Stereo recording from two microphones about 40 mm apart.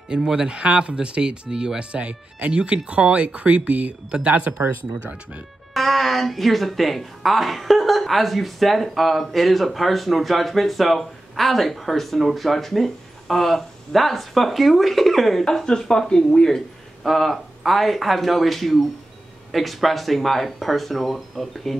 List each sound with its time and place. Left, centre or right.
0.1 s speech: centre; by 4.3 s right
5.8 s speech: centre
15.6 s speech: centre
17.0 s speech: centre